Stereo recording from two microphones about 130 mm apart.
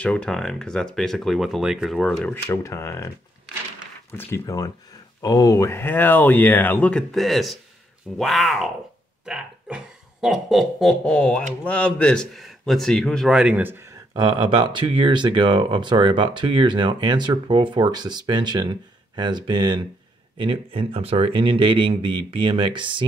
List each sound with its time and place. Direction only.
0.0 s speech: 10° left (ahead or behind)
2.0 s speech: 10° left (ahead or behind)
2.5 s speech: 20° left (ahead or behind)
4.2 s speech: 25° left (ahead or behind); by 13.6 s 5° right (ahead or behind)
13.6 s speech: 15° right (ahead or behind)
14.1 s speech: 35° right (ahead or behind)
20.3 s speech: 45° right (ahead or behind)